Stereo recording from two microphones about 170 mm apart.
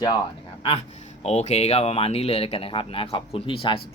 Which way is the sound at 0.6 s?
35° left (ahead or behind).